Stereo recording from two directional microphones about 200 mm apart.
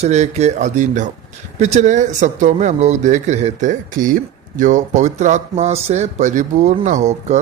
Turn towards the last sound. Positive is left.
turn(degrees=-35)  # may be behind; listen again after turning